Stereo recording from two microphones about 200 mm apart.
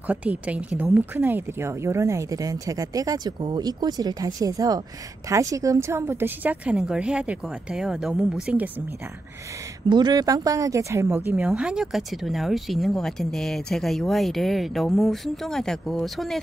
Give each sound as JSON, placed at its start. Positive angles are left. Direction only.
{"t": 0.0, "sound": "speech", "side_deg": -5}
{"t": 9.8, "sound": "speech", "side_deg": -20}